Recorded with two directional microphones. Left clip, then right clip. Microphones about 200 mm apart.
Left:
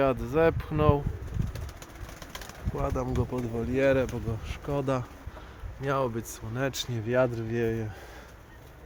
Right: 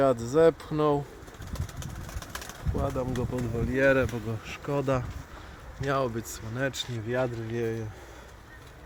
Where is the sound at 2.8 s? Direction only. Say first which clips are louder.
Even; 5° left (ahead or behind).